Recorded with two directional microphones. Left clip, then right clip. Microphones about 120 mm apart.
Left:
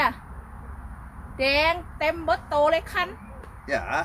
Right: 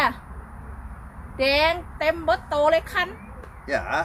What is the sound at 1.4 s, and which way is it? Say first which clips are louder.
Speech: right 2 dB; 10° right (ahead or behind).